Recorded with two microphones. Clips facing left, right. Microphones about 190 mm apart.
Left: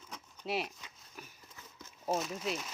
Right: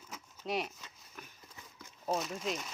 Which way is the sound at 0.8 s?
10° left (ahead or behind).